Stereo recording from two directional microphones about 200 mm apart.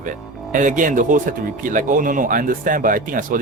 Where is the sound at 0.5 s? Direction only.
40° right (ahead or behind).